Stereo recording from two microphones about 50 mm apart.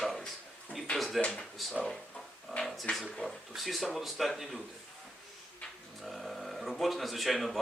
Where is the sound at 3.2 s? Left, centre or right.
Centre.